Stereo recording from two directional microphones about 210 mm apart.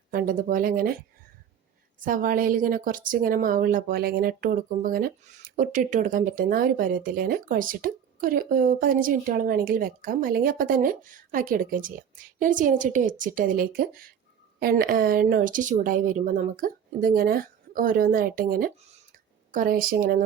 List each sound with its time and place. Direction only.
0.1 s speech: 40° right (ahead or behind)
2.0 s speech: 40° right (ahead or behind)